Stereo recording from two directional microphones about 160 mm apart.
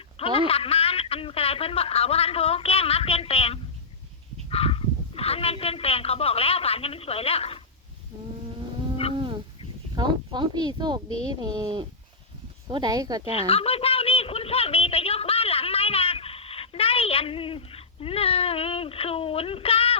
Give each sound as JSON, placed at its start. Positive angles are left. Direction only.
{"t": 0.2, "sound": "speech", "side_deg": 35}
{"t": 9.1, "sound": "dog", "side_deg": -30}
{"t": 9.9, "sound": "speech", "side_deg": -25}
{"t": 13.5, "sound": "a sound", "side_deg": 40}